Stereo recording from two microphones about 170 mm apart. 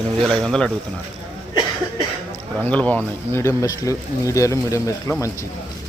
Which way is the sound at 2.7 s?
10° left (ahead or behind).